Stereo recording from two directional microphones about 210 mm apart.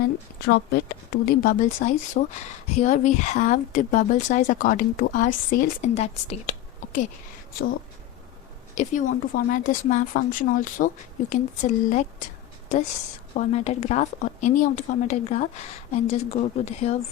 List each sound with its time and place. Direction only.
0.4 s speech: 50° left (ahead or behind)
8.7 s speech: 35° left (ahead or behind)
13.3 s speech: 30° left (ahead or behind)